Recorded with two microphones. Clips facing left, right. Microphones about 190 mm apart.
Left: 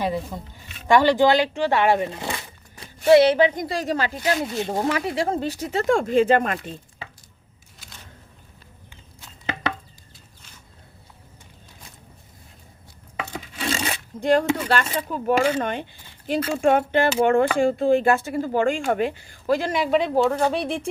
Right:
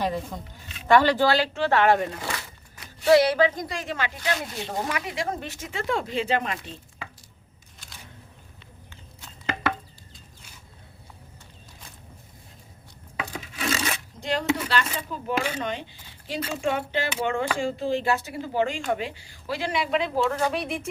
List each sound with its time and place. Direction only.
0.0 s speech: 10° left (ahead or behind)
2.1 s a sound: 25° left (ahead or behind)
3.1 s speech: 25° left (ahead or behind)
3.7 s speech: 35° left (ahead or behind)
13.6 s a sound: 30° left (ahead or behind)
14.2 s speech: 50° left (ahead or behind)
20.1 s speech: 30° left (ahead or behind)